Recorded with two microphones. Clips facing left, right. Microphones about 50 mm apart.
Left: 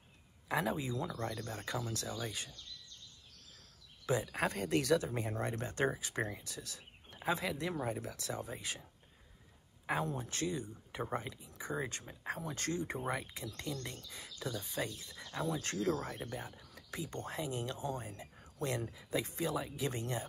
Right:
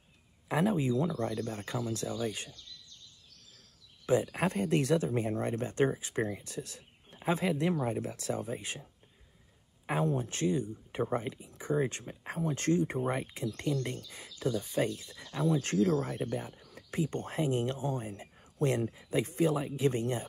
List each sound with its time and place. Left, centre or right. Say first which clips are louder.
0.5 s speech: right 6 dB; right
1.2 s speech: right 6 dB; centre
4.0 s speech: right 5 dB; right
9.8 s speech: right 5 dB; right